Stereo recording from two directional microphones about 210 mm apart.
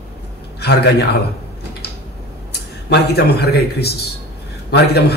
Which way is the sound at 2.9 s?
50° left (ahead or behind).